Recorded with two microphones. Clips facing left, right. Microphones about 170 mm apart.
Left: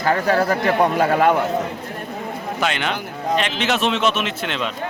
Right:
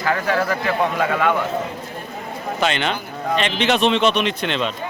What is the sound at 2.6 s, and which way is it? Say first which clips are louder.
A man's voice: right 2 dB; 5° left (ahead or behind).